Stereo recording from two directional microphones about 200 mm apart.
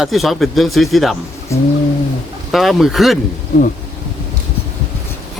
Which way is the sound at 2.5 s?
Centre (ahead or behind).